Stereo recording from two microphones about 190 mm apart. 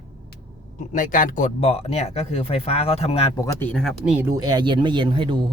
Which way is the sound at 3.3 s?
15° left (ahead or behind).